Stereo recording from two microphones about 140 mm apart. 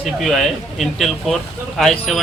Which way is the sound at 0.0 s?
Centre (ahead or behind).